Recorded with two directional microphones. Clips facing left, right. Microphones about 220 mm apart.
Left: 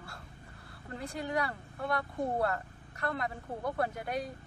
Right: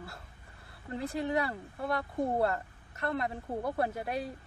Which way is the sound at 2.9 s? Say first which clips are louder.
Right 2 dB; centre (ahead or behind).